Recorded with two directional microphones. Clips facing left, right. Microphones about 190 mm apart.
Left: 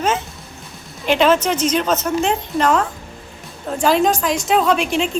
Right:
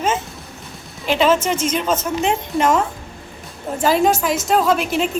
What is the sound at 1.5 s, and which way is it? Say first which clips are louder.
Speech: left 2 dB; 50° right (ahead or behind).